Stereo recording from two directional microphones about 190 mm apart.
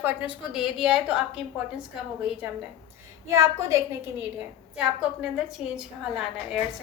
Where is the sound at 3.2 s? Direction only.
15° right (ahead or behind).